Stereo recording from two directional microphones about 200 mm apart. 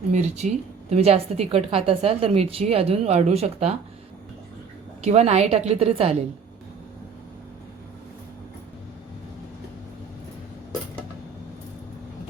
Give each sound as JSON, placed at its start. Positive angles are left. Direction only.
{"t": 0.1, "sound": "a woman's voice", "side_deg": -35}
{"t": 5.0, "sound": "a woman's voice", "side_deg": -35}